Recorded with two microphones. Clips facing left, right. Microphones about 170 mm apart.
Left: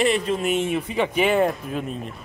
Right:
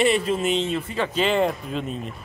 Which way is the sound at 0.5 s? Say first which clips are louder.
Left 2 dB; 15° left (ahead or behind).